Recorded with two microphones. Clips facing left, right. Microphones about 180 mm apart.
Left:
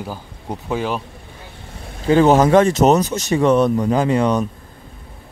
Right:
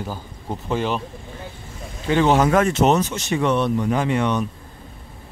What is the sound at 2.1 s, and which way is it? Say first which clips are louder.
Speech: left 5 dB; 40° left (ahead or behind).